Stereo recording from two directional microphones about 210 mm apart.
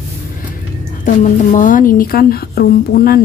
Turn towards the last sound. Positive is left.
turn(degrees=45)  # may be behind; listen again after turning